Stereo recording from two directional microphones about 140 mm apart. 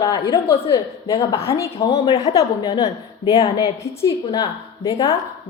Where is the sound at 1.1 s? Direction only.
45° left (ahead or behind).